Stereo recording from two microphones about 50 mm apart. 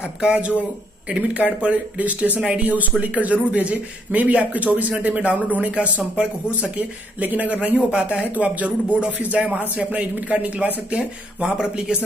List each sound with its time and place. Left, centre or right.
0.2 s speech: right